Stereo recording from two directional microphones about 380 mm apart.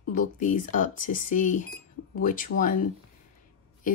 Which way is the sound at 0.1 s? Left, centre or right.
Left.